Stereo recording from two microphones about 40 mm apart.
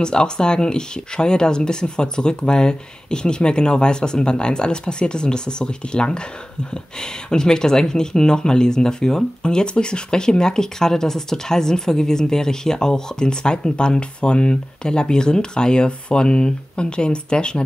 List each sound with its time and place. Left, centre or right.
0.0 s speech: left